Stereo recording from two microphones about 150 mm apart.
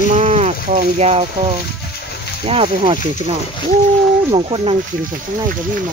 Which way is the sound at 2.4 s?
40° right (ahead or behind).